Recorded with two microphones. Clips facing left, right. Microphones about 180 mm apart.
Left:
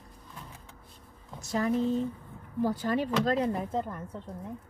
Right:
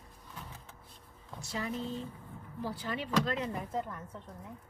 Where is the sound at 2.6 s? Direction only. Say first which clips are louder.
Left 9 dB; 45° left (ahead or behind).